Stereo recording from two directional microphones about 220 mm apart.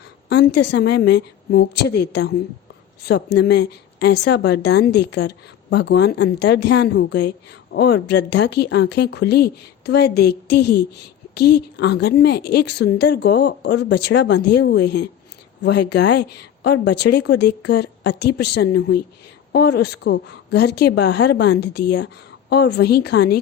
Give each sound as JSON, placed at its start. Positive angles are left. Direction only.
{"t": 0.3, "sound": "a woman's voice", "side_deg": 50}